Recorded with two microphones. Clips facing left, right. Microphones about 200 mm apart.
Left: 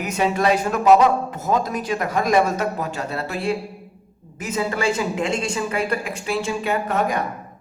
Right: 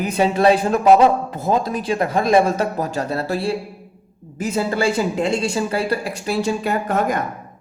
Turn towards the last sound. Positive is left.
turn(degrees=-40)  # may be behind; listen again after turning